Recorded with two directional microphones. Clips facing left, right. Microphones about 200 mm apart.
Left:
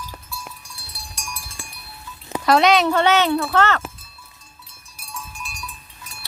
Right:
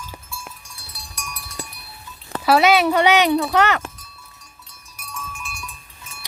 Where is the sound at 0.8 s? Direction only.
30° left (ahead or behind).